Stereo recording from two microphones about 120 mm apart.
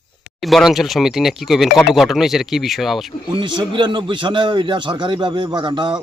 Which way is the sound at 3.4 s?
40° right (ahead or behind).